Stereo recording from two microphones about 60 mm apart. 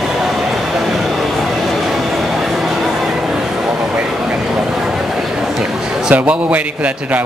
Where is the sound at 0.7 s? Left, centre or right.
Centre.